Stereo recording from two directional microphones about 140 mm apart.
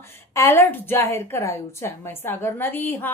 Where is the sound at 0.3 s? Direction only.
20° left (ahead or behind).